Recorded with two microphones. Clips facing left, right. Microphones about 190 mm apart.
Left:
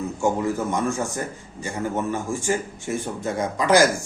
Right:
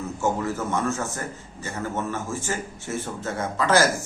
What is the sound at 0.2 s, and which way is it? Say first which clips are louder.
A man's voice: left 3 dB; 15° left (ahead or behind).